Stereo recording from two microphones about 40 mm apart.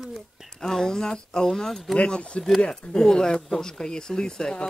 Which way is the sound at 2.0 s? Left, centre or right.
Left.